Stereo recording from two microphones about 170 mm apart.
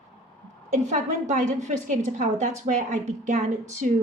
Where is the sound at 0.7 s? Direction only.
45° right (ahead or behind).